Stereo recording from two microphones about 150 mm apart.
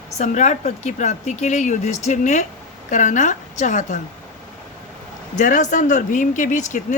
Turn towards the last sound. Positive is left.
turn(degrees=55)  # may be behind; listen again after turning